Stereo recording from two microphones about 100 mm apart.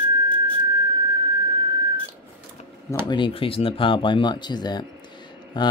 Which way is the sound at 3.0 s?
55° left (ahead or behind).